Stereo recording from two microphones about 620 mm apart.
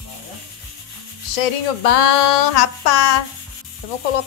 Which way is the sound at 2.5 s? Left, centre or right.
Left.